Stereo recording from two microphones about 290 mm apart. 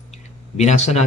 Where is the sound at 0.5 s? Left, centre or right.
Left.